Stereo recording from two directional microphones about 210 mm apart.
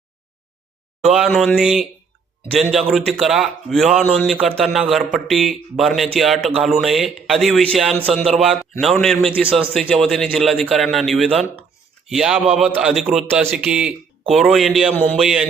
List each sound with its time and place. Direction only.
1.1 s speech: centre (ahead or behind)
11.3 s speech: 25° right (ahead or behind)
12.0 s speech: centre (ahead or behind)
14.9 s a sound: 10° left (ahead or behind)